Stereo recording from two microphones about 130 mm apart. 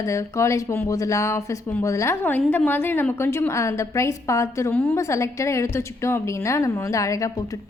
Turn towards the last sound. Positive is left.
turn(degrees=25)  # may be behind; listen again after turning